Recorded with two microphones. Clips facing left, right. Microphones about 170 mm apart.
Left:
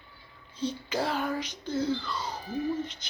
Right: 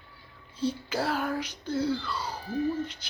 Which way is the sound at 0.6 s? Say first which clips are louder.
Right 1 dB; 5° right (ahead or behind).